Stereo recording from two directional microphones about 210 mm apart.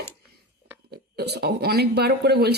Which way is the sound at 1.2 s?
50° right (ahead or behind).